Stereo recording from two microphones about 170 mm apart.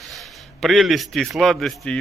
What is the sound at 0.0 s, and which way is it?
A man's voice, centre (ahead or behind).